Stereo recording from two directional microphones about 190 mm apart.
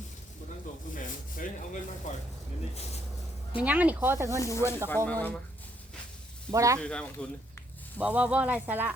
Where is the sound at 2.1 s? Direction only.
40° left (ahead or behind).